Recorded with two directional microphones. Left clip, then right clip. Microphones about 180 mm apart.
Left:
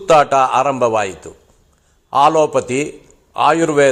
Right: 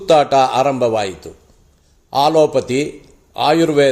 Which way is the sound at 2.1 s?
15° right (ahead or behind).